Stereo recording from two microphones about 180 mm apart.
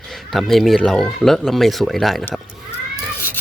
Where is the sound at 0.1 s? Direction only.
Centre (ahead or behind).